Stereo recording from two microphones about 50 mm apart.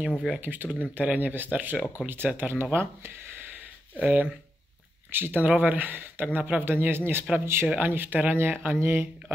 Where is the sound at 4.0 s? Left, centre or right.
Right.